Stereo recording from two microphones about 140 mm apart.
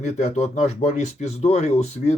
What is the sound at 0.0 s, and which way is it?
Speech, 55° left (ahead or behind).